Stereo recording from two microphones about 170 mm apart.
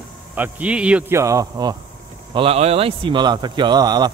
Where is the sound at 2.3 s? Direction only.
35° right (ahead or behind).